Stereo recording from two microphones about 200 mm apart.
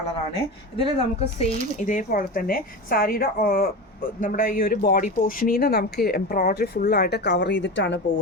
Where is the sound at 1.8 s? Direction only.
40° left (ahead or behind).